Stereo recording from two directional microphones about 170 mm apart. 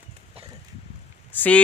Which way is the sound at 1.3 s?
10° left (ahead or behind).